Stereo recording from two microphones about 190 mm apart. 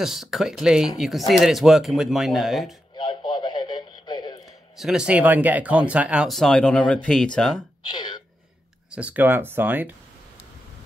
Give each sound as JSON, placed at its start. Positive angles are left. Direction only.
{"t": 0.0, "sound": "speech", "side_deg": 0}
{"t": 3.0, "sound": "radio", "side_deg": 25}
{"t": 4.7, "sound": "speech", "side_deg": -5}
{"t": 7.8, "sound": "speech", "side_deg": 25}
{"t": 8.9, "sound": "speech", "side_deg": -10}